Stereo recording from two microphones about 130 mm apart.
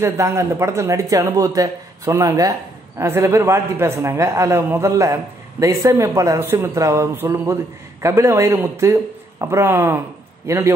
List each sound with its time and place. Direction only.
0.0 s a man's voice: 20° right (ahead or behind)